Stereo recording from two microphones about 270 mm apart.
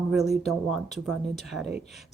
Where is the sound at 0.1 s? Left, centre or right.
Centre.